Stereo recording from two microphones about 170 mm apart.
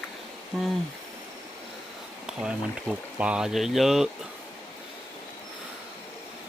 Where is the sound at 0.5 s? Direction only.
Centre (ahead or behind).